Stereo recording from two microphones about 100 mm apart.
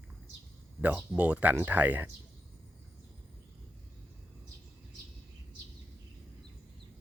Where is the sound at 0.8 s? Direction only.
15° right (ahead or behind).